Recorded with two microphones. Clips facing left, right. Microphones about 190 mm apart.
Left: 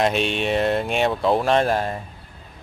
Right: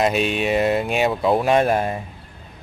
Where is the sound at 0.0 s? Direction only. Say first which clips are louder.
Right 1 dB; 5° right (ahead or behind).